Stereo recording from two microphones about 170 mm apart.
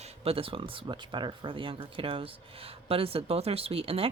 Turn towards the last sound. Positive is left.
turn(degrees=-35)  # may be behind; listen again after turning